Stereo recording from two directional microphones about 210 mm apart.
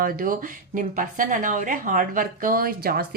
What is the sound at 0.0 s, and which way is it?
A woman's voice, 40° right (ahead or behind).